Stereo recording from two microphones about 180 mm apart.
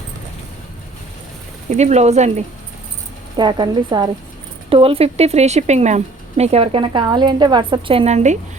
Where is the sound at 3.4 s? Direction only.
25° right (ahead or behind).